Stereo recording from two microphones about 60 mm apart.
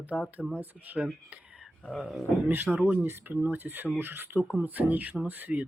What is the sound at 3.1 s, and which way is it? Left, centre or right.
Speech, right.